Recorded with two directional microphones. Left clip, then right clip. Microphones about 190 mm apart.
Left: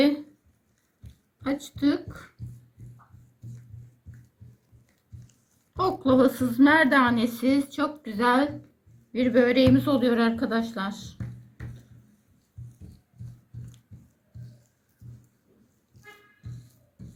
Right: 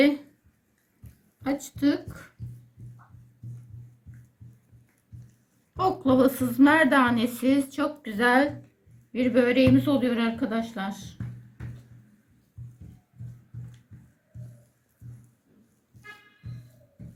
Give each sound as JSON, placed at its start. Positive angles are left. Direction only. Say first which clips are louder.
{"t": 1.4, "sound": "a woman's voice", "louder": "even", "side_deg": 0}
{"t": 5.7, "sound": "a woman's voice", "louder": "even", "side_deg": 0}
{"t": 9.1, "sound": "a woman's voice", "louder": "left 1 dB", "side_deg": 5}